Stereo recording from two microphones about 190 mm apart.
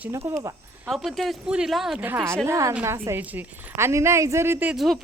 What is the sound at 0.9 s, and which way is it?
A woman's voice, centre (ahead or behind).